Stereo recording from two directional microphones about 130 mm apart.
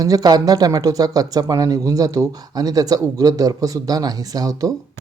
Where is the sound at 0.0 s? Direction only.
30° right (ahead or behind).